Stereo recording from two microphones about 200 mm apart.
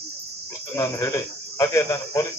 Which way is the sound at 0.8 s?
15° left (ahead or behind).